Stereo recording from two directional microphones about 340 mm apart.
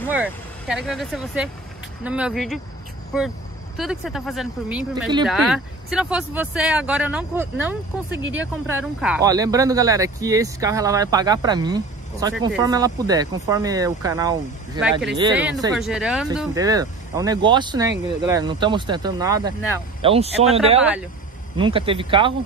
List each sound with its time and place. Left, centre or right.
0.1 s speech: centre
3.7 s speech: centre